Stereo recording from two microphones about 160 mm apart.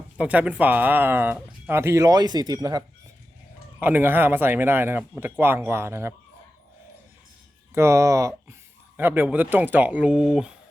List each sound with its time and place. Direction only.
0.2 s speech: 10° right (ahead or behind)
7.7 s speech: 15° right (ahead or behind)